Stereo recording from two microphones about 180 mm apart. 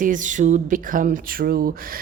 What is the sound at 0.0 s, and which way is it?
A woman's voice, 45° right (ahead or behind).